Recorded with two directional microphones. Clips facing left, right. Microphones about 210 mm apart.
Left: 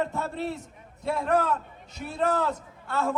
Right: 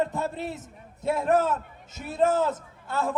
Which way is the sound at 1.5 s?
Centre (ahead or behind).